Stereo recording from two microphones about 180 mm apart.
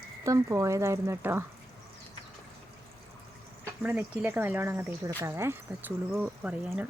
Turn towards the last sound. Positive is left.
turn(degrees=-5)  # may be behind; listen again after turning